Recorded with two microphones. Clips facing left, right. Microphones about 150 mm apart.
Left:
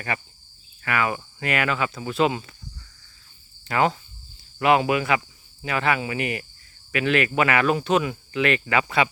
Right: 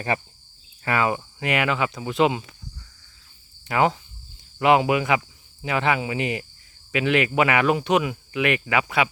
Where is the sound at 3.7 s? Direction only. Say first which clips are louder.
Right 1 dB; 15° right (ahead or behind).